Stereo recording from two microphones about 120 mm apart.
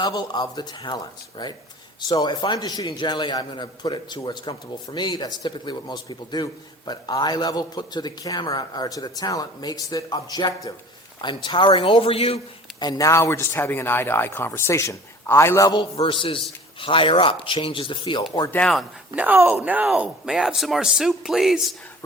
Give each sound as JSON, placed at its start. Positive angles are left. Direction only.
{"t": 0.0, "sound": "a man's voice", "side_deg": 35}
{"t": 12.8, "sound": "speech", "side_deg": 30}
{"t": 15.8, "sound": "speech", "side_deg": 45}
{"t": 18.5, "sound": "speech", "side_deg": 5}
{"t": 19.1, "sound": "speech", "side_deg": -15}